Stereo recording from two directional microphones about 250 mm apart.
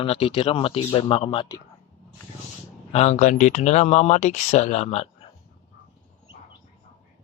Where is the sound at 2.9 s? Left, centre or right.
Left.